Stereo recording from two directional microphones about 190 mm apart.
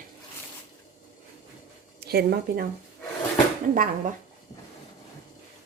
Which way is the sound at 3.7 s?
45° right (ahead or behind).